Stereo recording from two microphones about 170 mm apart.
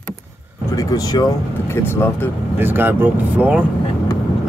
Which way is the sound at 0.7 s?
20° left (ahead or behind).